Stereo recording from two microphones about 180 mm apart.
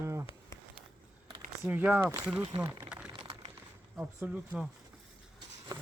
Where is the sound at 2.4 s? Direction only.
20° right (ahead or behind).